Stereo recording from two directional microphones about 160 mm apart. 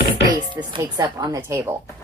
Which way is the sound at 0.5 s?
30° right (ahead or behind).